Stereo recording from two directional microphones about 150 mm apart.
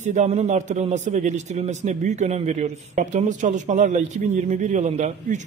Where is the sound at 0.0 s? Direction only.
50° right (ahead or behind).